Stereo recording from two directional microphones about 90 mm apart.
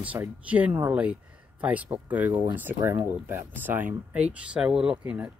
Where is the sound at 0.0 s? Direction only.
15° right (ahead or behind).